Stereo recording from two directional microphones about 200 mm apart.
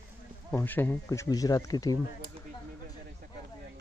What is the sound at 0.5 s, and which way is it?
Speech, 10° left (ahead or behind).